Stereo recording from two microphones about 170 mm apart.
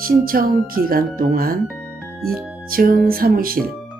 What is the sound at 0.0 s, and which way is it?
Speech, 60° right (ahead or behind).